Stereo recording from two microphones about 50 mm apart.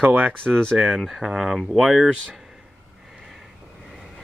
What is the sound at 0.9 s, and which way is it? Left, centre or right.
Speech, centre.